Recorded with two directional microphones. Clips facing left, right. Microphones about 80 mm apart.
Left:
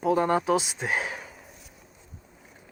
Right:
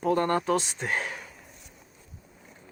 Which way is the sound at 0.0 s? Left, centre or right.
Centre.